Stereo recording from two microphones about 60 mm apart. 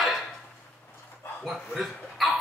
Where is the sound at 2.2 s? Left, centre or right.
Centre.